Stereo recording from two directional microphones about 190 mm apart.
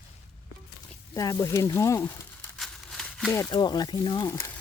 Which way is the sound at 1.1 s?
15° left (ahead or behind).